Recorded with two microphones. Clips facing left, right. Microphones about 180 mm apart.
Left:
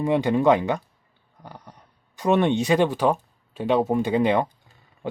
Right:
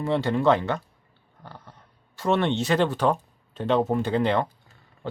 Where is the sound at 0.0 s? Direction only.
15° left (ahead or behind).